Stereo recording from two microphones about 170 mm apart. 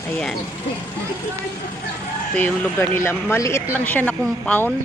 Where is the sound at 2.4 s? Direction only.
10° left (ahead or behind).